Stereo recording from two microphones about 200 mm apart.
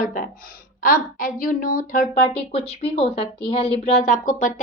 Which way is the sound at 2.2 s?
30° left (ahead or behind).